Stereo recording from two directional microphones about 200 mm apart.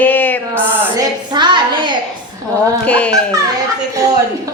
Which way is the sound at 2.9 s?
5° left (ahead or behind).